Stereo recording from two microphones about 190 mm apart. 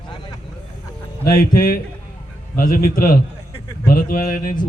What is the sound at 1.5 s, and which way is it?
A man's voice, 50° left (ahead or behind).